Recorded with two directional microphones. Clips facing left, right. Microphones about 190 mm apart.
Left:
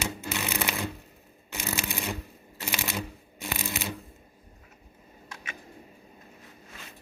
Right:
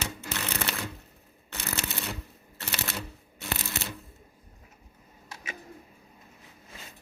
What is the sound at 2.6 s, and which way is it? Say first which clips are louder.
Shuffling cards: left 3 dB; 15° left (ahead or behind).